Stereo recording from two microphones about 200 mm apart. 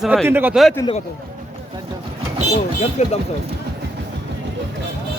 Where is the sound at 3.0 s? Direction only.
35° left (ahead or behind).